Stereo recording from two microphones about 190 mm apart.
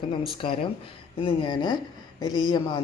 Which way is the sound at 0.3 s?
30° left (ahead or behind).